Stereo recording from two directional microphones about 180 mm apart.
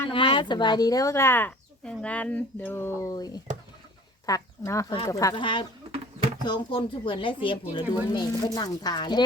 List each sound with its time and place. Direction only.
0.1 s a woman's voice: 30° left (ahead or behind)